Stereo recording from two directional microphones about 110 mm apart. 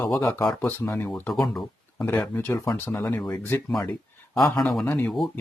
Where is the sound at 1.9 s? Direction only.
15° left (ahead or behind).